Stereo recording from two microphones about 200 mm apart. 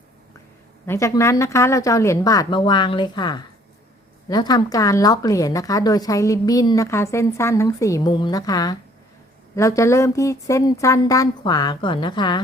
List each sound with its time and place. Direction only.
0.9 s a woman's voice: 15° left (ahead or behind)